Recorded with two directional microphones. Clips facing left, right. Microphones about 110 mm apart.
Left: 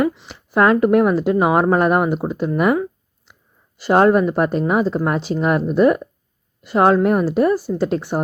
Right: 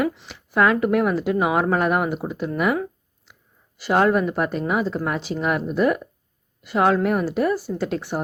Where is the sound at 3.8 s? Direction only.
35° left (ahead or behind).